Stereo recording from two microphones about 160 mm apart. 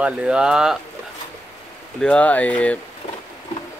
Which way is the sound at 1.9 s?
5° left (ahead or behind).